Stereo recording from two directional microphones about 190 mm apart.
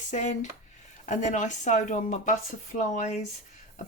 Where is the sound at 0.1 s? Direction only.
40° left (ahead or behind).